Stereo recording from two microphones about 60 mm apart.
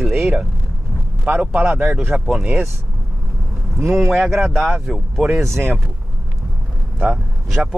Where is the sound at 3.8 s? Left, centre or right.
Right.